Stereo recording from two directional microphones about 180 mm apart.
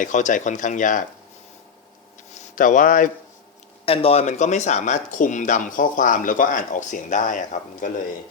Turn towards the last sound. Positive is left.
turn(degrees=45)  # may be behind; listen again after turning